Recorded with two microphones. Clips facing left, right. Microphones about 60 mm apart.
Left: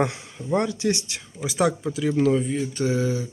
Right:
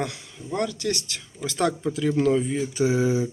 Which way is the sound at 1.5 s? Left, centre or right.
Centre.